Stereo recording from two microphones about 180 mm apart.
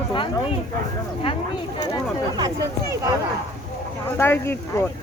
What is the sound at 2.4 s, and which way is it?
Speech, 25° right (ahead or behind).